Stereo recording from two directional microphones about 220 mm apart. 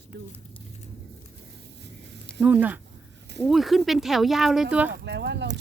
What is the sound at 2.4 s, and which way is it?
Speech, 5° right (ahead or behind).